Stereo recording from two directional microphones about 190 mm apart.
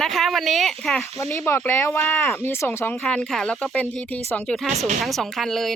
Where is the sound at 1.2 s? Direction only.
15° left (ahead or behind).